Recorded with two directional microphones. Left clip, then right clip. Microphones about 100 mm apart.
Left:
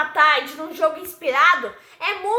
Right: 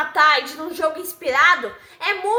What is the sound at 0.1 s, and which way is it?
A child's voice, 30° right (ahead or behind).